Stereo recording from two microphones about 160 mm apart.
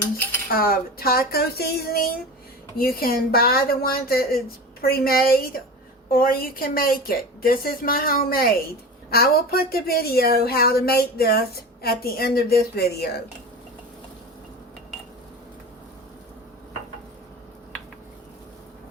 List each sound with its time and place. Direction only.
0.5 s speech: 65° left (ahead or behind); by 13.1 s 85° left